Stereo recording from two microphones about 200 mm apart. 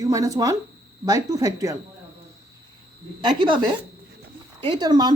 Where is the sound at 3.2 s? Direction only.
25° right (ahead or behind).